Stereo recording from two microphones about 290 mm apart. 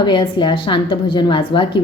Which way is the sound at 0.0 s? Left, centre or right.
Centre.